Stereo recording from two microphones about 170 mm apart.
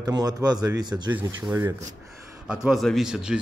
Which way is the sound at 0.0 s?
25° right (ahead or behind).